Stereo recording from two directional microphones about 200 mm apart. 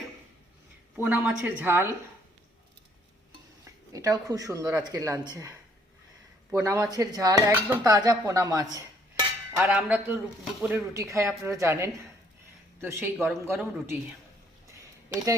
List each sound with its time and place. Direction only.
0.9 s a man's voice: 10° right (ahead or behind)
3.6 s speech: 15° right (ahead or behind)
6.6 s a man's voice: 15° right (ahead or behind)
9.6 s a man's voice: 5° right (ahead or behind)
13.1 s a man's voice: centre (ahead or behind)
13.4 s a man's voice: 10° right (ahead or behind)
15.1 s a man's voice: 15° right (ahead or behind)